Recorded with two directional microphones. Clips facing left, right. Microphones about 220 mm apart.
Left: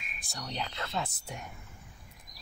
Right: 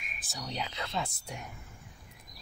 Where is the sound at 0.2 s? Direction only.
Centre (ahead or behind).